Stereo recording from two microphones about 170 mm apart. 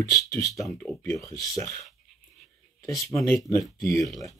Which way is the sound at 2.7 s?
20° left (ahead or behind).